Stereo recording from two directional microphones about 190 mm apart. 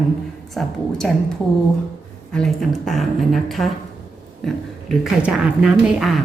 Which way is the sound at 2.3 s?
5° left (ahead or behind).